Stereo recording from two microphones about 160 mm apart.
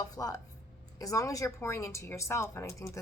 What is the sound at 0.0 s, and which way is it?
A woman's voice, 20° left (ahead or behind).